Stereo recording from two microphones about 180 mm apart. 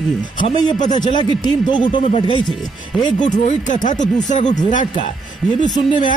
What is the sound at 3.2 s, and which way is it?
Speech, 45° left (ahead or behind).